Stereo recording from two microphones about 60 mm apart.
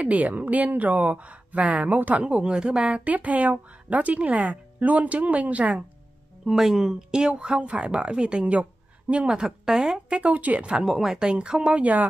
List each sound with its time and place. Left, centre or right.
0.0 s speech: right
6.4 s speech: centre; by 10.8 s right
10.8 s speech: centre
11.8 s speech: right